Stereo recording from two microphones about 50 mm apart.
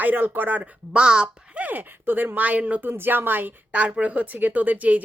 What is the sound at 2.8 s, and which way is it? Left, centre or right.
Speech, right.